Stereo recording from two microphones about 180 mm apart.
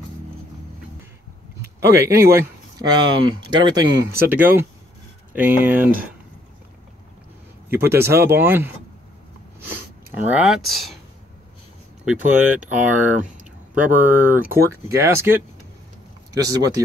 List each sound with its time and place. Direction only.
1.8 s speech: 15° right (ahead or behind)
7.7 s speech: 15° right (ahead or behind)
10.2 s speech: 5° right (ahead or behind)
12.0 s speech: 10° right (ahead or behind)